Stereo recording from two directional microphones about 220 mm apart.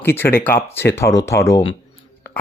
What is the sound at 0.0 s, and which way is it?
Speech, 10° left (ahead or behind).